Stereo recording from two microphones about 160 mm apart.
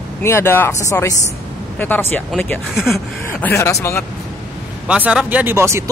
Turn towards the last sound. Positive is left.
turn(degrees=-15)  # may be behind; listen again after turning